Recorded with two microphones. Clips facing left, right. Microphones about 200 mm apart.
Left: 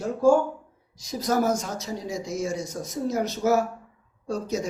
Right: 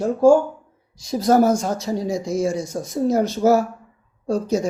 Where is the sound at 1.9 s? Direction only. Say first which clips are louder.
Right 9 dB; 50° right (ahead or behind).